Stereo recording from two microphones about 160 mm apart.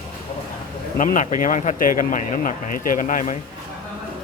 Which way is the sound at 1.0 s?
50° left (ahead or behind).